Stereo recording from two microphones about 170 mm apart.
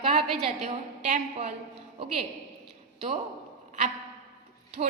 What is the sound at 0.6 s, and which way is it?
Speech, 40° right (ahead or behind).